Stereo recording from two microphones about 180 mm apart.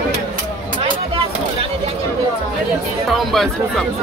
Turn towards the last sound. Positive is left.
turn(degrees=0)  # may be behind; listen again after turning